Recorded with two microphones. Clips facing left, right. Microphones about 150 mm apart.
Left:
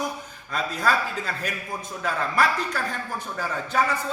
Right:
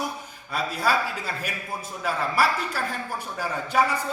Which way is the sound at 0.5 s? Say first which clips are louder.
Even; 10° right (ahead or behind).